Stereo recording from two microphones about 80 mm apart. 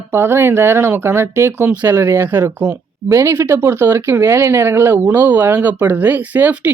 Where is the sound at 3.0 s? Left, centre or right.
Right.